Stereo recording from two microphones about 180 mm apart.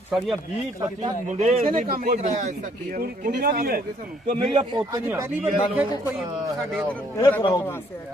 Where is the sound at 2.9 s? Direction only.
60° right (ahead or behind).